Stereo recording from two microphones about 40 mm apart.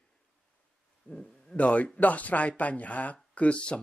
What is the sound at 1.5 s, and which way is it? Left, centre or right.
Speech, left.